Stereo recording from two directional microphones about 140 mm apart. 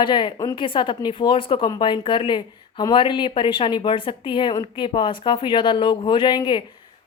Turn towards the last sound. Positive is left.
turn(degrees=35)  # may be behind; listen again after turning